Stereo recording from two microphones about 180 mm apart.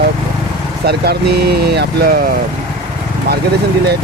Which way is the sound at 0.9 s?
65° right (ahead or behind).